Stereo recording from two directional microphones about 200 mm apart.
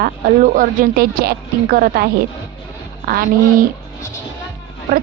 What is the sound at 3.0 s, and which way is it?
Speech, 45° right (ahead or behind).